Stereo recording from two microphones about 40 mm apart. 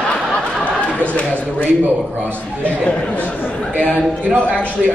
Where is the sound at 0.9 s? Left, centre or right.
Left.